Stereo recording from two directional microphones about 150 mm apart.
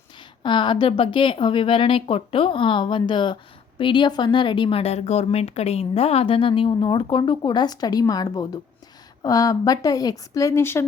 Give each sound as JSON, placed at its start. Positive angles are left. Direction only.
{"t": 0.2, "sound": "a woman's voice", "side_deg": 30}